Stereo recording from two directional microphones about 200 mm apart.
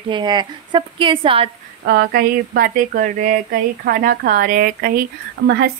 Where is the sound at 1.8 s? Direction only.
50° right (ahead or behind).